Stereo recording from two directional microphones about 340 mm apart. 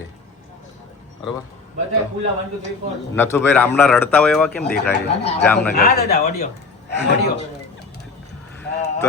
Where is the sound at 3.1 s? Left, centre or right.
Centre.